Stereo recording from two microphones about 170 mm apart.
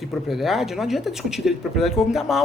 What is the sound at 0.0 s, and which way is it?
Speech, centre (ahead or behind).